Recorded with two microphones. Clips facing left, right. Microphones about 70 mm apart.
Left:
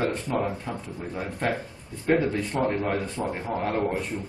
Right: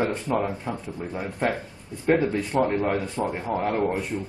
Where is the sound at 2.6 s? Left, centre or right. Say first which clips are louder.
Even; centre.